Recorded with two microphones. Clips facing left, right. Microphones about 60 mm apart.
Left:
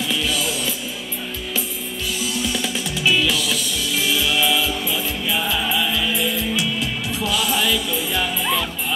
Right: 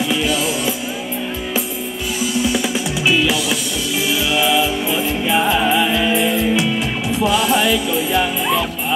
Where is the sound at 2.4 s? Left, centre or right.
Centre.